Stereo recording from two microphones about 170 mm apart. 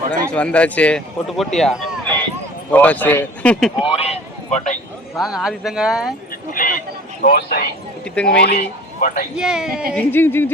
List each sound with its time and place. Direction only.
0.3 s speech: 5° left (ahead or behind)
3.8 s a sound: 35° left (ahead or behind)
5.1 s speech: centre (ahead or behind)
6.5 s a sound: 55° left (ahead or behind)
7.2 s a man's voice: 60° left (ahead or behind)
8.1 s speech: 5° left (ahead or behind)
8.5 s speech: 50° left (ahead or behind)
9.3 s speech: 5° right (ahead or behind)
9.9 s speech: 10° left (ahead or behind)